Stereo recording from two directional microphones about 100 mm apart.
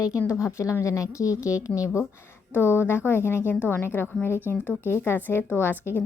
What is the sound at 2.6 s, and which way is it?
A woman's voice, 20° left (ahead or behind).